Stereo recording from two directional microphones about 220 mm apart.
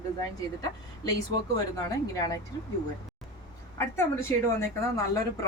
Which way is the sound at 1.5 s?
15° left (ahead or behind).